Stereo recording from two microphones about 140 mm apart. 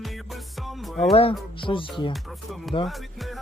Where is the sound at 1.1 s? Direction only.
40° left (ahead or behind).